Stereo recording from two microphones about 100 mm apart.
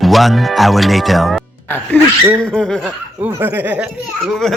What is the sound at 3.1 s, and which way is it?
Speech, 20° right (ahead or behind).